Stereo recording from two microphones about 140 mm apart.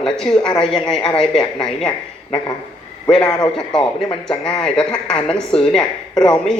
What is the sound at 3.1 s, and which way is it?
Speech, 5° left (ahead or behind).